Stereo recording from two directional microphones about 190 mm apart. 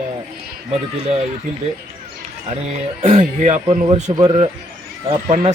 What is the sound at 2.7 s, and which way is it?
Speech, 40° right (ahead or behind).